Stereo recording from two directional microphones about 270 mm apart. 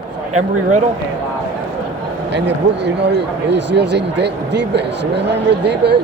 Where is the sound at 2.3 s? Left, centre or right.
Right.